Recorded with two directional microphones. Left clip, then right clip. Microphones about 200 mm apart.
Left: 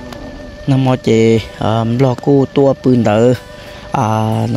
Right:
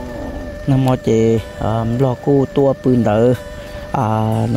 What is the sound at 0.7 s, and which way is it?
Speech, 5° left (ahead or behind).